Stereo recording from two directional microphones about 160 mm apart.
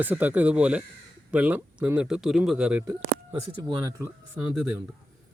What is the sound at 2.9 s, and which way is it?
Speech, 20° right (ahead or behind).